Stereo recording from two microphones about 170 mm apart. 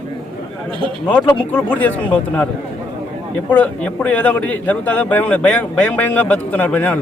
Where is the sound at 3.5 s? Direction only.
10° left (ahead or behind).